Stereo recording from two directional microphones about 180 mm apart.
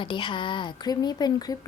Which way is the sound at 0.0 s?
25° left (ahead or behind).